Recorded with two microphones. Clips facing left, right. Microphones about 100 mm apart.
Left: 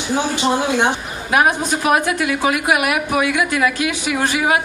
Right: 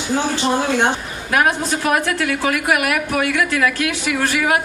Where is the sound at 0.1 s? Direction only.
15° left (ahead or behind).